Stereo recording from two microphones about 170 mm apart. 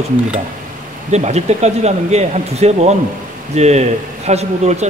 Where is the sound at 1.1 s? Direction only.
40° right (ahead or behind).